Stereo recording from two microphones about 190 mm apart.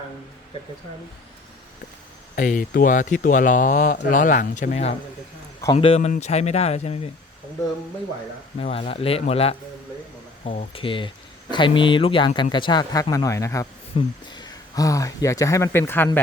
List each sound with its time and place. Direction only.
2.3 s speech: 45° left (ahead or behind)
8.5 s speech: 30° left (ahead or behind); by 16.2 s 10° left (ahead or behind)